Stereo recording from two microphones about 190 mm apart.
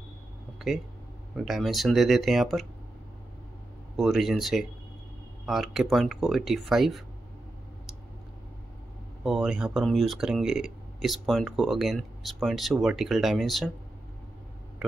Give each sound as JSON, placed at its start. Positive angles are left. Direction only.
{"t": 1.3, "sound": "speech", "side_deg": 0}
{"t": 3.9, "sound": "speech", "side_deg": 0}
{"t": 9.2, "sound": "speech", "side_deg": -5}
{"t": 14.8, "sound": "a sound", "side_deg": 0}